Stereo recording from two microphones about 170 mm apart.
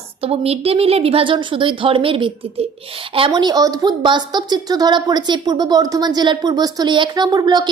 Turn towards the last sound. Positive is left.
turn(degrees=-25)  # may be behind; listen again after turning